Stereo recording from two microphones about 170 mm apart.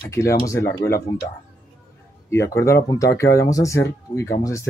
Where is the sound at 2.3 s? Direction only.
15° left (ahead or behind).